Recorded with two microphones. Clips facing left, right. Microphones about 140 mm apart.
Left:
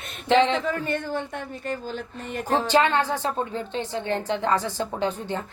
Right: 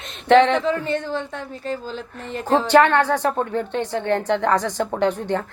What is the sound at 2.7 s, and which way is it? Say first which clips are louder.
Speech: right 6 dB; 60° right (ahead or behind).